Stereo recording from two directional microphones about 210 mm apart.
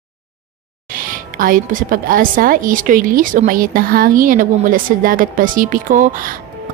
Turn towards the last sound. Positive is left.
turn(degrees=-40)  # may be behind; listen again after turning